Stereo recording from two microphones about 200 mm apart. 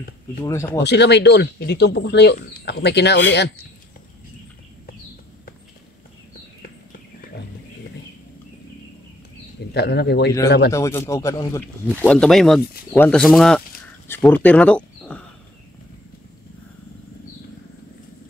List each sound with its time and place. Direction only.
0.4 s speech: 15° left (ahead or behind)
0.8 s speech: 60° left (ahead or behind)
9.8 s speech: 55° left (ahead or behind)
10.7 s speech: 15° left (ahead or behind)
14.0 s a sound: 10° left (ahead or behind)